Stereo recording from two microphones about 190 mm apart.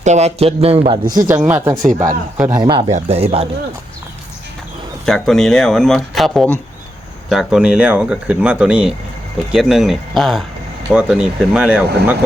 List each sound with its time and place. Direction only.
0.0 s a man's voice: 35° right (ahead or behind)
1.4 s speech: 10° right (ahead or behind)
1.8 s speech: 45° right (ahead or behind)
2.5 s speech: 20° right (ahead or behind)
2.9 s a man's voice: 30° right (ahead or behind)
5.0 s speech: centre (ahead or behind)